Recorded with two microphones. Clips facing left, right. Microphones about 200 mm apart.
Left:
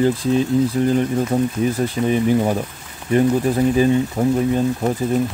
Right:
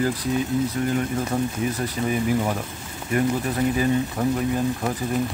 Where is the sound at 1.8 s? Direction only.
30° left (ahead or behind).